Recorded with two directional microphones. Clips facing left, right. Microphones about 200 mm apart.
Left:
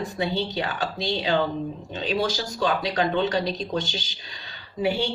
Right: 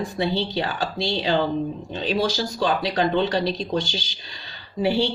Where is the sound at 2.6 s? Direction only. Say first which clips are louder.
Right 1 dB; 35° right (ahead or behind).